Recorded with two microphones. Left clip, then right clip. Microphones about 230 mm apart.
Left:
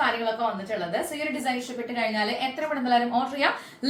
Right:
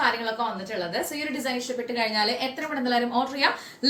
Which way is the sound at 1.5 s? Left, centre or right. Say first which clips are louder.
Right 2 dB; centre.